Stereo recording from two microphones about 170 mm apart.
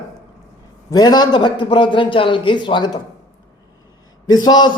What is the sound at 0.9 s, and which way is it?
A man's voice, 25° left (ahead or behind).